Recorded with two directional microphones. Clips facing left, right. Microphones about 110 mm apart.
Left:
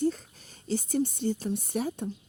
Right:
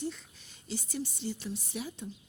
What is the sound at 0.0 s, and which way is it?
Speech, 45° left (ahead or behind).